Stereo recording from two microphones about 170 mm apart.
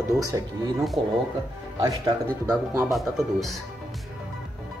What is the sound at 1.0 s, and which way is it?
Speech, 30° right (ahead or behind).